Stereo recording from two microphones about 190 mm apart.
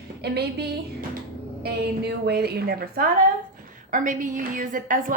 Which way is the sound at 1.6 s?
55° right (ahead or behind).